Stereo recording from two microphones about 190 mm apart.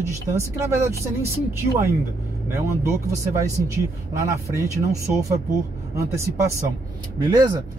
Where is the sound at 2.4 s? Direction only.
15° right (ahead or behind).